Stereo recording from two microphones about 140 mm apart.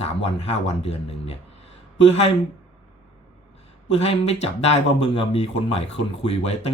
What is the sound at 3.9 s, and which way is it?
Speech, 45° left (ahead or behind).